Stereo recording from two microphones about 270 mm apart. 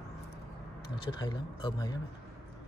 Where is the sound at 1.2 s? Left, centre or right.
Centre.